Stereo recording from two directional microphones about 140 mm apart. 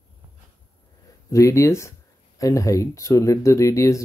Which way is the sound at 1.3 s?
20° left (ahead or behind).